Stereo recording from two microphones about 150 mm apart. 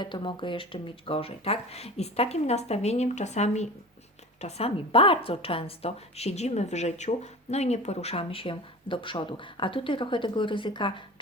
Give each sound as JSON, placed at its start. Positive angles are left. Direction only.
{"t": 0.0, "sound": "a woman's voice", "side_deg": 30}